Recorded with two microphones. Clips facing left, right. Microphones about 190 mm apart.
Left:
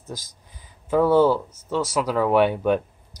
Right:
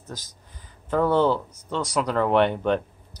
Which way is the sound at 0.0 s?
10° left (ahead or behind).